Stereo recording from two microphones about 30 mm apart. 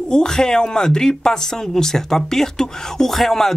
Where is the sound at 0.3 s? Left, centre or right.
Left.